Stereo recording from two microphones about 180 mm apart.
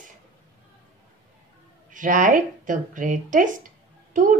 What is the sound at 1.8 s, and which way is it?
Speech, 45° right (ahead or behind).